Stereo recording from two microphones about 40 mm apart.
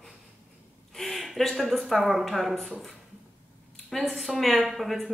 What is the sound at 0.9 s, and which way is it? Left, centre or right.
A woman's voice, centre.